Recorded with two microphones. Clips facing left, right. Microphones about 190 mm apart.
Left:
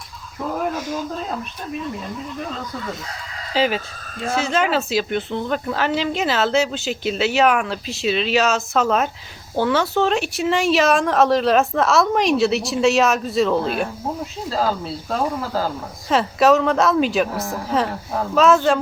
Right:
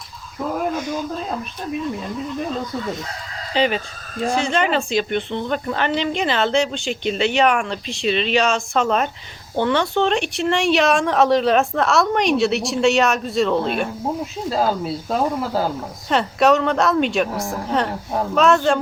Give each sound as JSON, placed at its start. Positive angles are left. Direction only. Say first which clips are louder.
{"t": 0.7, "sound": "speech", "louder": "right 1 dB", "side_deg": 0}
{"t": 3.5, "sound": "a woman's voice", "louder": "even", "side_deg": 5}
{"t": 14.5, "sound": "speech", "louder": "right 2 dB", "side_deg": -15}
{"t": 16.0, "sound": "a woman's voice", "louder": "left 1 dB", "side_deg": 0}